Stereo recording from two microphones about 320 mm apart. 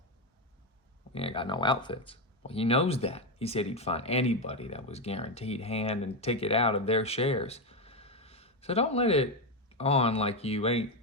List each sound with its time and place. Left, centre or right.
1.1 s speech: centre